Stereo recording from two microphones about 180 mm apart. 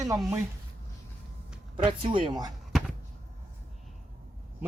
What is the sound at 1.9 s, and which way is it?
Speech, 25° right (ahead or behind).